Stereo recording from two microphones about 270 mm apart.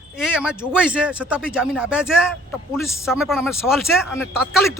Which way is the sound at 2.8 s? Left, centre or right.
Centre.